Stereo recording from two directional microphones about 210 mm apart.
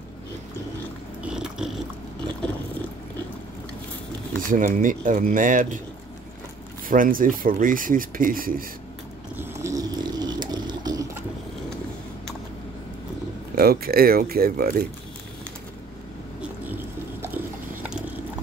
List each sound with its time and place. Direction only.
1.2 s a sound: 5° right (ahead or behind)
4.4 s speech: 40° right (ahead or behind)
6.9 s speech: 40° right (ahead or behind)
9.4 s a sound: 15° right (ahead or behind)
13.6 s speech: 45° right (ahead or behind)
16.3 s bird: 10° right (ahead or behind)